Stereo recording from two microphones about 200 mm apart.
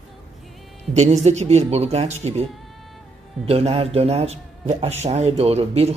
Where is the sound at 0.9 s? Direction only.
35° right (ahead or behind).